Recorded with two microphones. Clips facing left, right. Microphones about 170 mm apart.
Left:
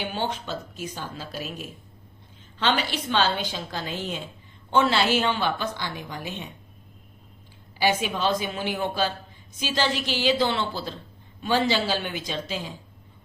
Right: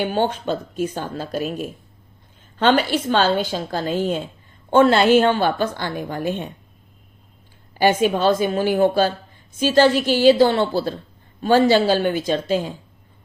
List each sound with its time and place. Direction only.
0.0 s a woman's voice: 50° right (ahead or behind)
7.8 s a woman's voice: 50° right (ahead or behind)